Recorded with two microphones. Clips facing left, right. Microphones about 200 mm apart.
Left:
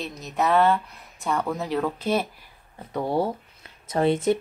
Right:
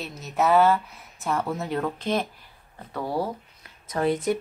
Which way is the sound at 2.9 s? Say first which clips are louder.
Left 3 dB; 25° left (ahead or behind).